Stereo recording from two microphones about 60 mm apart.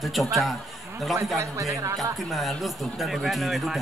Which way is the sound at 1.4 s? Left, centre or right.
Right.